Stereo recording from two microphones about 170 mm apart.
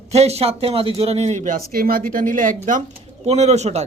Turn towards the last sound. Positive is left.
turn(degrees=-40)  # may be behind; listen again after turning